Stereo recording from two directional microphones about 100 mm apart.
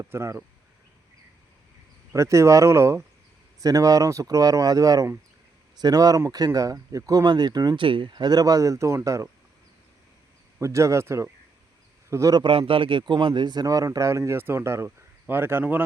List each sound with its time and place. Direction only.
0.0 s speech: 25° right (ahead or behind)
2.1 s speech: 30° right (ahead or behind)
7.9 s speech: 55° right (ahead or behind); by 9.2 s 30° right (ahead or behind)
10.6 s speech: 30° right (ahead or behind)
12.3 s speech: 55° right (ahead or behind); by 15.8 s 20° right (ahead or behind)